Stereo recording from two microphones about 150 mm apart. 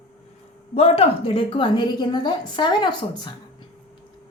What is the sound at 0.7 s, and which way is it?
A woman's voice, 40° left (ahead or behind).